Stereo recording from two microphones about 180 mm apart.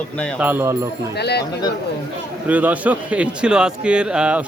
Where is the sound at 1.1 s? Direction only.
65° left (ahead or behind).